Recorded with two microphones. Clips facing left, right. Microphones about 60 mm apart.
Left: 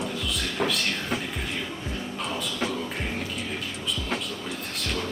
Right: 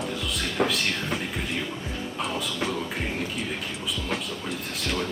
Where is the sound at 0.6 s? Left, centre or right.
Right.